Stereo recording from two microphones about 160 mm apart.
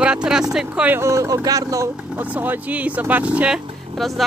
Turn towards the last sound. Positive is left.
turn(degrees=0)  # may be behind; listen again after turning